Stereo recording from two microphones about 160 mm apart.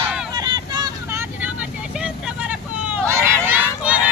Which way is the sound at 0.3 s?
25° right (ahead or behind).